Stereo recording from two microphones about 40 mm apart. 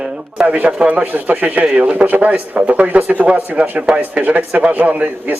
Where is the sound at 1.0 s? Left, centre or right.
Right.